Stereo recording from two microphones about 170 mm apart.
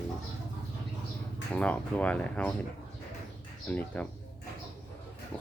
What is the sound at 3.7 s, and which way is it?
Speech, 10° left (ahead or behind).